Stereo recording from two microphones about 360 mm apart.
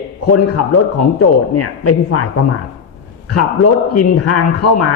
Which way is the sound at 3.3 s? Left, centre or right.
Left.